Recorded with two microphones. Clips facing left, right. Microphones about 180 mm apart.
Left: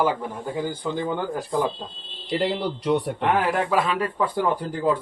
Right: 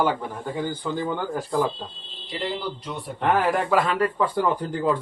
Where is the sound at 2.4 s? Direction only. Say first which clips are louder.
Left 3 dB; 70° left (ahead or behind).